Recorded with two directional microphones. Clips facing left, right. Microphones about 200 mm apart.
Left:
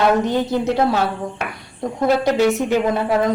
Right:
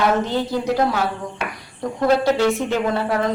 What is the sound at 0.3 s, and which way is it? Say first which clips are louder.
Speech: left 2 dB; 20° left (ahead or behind).